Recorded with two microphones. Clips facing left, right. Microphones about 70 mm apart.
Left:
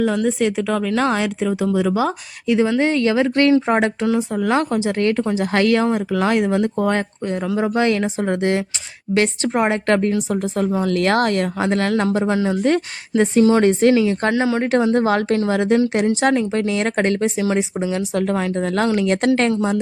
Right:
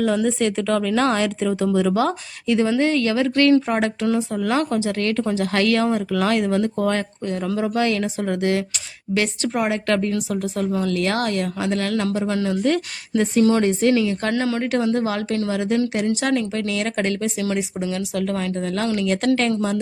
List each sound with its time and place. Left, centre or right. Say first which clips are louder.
0.3 s speech: left 1 dB; centre; by 3.9 s left
4.0 s speech: left 2 dB; centre
7.6 s speech: left 3 dB; left
13.6 s speech: left 4 dB; left
13.9 s speech: left 3 dB; left
14.3 s speech: left 3 dB; centre
14.6 s speech: left 4 dB; left
16.6 s speech: left 4 dB; left